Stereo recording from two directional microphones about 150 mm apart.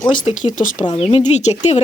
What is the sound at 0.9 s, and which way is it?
Speech, 35° left (ahead or behind).